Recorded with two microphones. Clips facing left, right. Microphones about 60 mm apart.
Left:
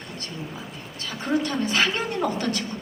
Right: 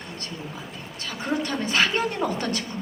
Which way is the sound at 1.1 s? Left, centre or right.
Right.